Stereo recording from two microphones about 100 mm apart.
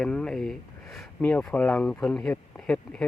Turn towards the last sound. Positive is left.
turn(degrees=10)  # may be behind; listen again after turning